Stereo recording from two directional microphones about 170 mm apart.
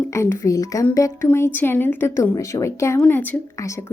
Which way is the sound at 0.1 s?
15° left (ahead or behind).